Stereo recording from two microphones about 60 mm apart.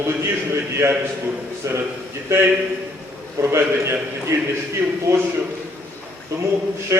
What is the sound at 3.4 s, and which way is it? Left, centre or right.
Speech, right.